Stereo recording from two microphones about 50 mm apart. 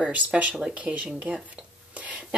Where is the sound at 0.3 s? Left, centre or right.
Centre.